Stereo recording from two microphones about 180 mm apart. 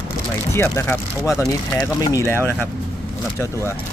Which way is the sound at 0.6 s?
15° left (ahead or behind).